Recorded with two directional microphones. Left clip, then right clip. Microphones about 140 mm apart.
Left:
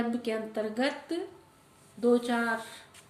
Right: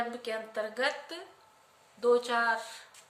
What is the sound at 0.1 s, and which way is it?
A woman's voice, 20° right (ahead or behind).